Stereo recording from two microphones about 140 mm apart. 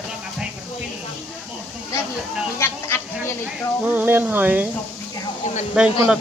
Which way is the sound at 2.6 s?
20° left (ahead or behind).